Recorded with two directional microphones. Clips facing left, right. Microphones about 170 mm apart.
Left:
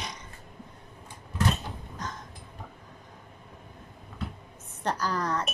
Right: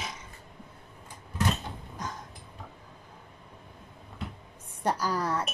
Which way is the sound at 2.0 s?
10° right (ahead or behind).